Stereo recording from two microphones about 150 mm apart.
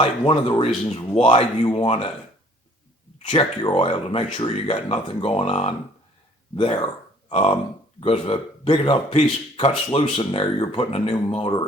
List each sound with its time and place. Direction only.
0.0 s speech: 35° left (ahead or behind)
3.2 s speech: 30° left (ahead or behind)